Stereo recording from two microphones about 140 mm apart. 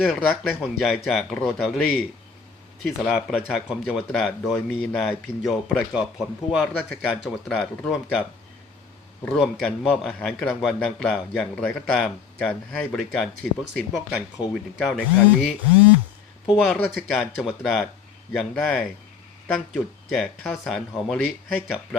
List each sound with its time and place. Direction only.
0.0 s speech: centre (ahead or behind)
2.8 s speech: centre (ahead or behind)
9.4 s speech: 5° left (ahead or behind)
14.4 s speech: 35° left (ahead or behind)
14.8 s speech: 5° left (ahead or behind)
16.6 s speech: centre (ahead or behind)